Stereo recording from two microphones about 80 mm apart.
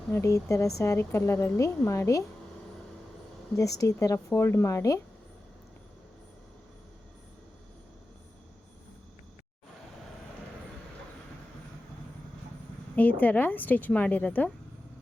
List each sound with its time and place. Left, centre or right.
0.1 s a woman's voice: left
3.5 s speech: left
4.3 s a woman's voice: left
13.0 s a woman's voice: left